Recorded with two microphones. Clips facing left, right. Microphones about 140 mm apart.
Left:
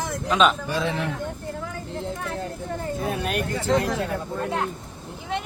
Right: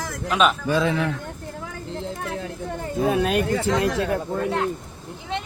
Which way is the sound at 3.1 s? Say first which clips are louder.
Right 8 dB; 90° right.